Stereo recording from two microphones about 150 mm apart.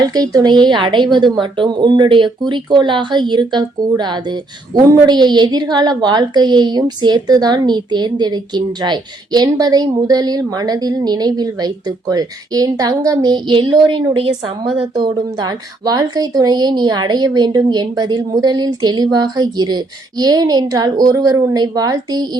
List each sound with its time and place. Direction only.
0.0 s speech: 25° right (ahead or behind)